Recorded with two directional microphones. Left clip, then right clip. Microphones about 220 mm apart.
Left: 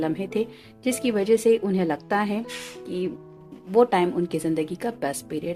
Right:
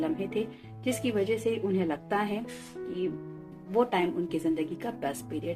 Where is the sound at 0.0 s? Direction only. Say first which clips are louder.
Left 5 dB; 50° left (ahead or behind).